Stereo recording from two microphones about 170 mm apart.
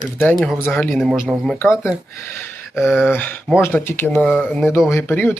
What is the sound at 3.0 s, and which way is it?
Speech, 10° left (ahead or behind).